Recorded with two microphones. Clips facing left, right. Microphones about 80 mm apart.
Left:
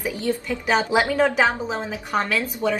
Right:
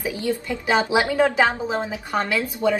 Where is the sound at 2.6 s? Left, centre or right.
Centre.